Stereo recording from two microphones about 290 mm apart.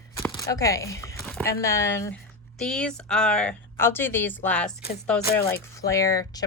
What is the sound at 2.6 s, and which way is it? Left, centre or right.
Speech, centre.